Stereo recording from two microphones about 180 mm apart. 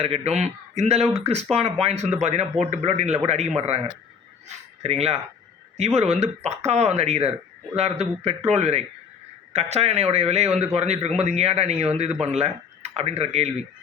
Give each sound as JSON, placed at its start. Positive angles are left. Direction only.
{"t": 0.0, "sound": "a man's voice", "side_deg": -35}
{"t": 4.8, "sound": "a man's voice", "side_deg": -35}